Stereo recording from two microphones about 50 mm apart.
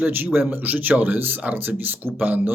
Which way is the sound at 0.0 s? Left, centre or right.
Right.